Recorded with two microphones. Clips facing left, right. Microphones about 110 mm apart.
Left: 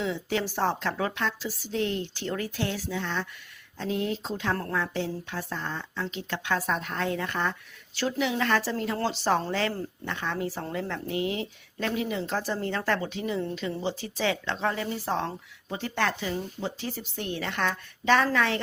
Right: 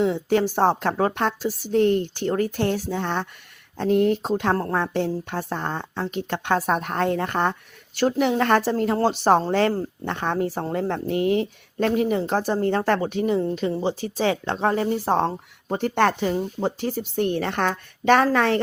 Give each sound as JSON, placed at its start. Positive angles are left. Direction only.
{"t": 0.0, "sound": "a woman's voice", "side_deg": -50}